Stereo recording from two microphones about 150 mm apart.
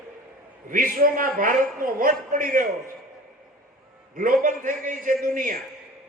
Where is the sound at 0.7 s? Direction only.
65° right (ahead or behind).